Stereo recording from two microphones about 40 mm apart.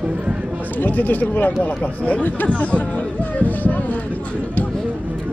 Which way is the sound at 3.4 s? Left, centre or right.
Left.